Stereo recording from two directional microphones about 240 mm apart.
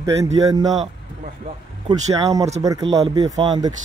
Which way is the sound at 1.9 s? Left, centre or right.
Centre.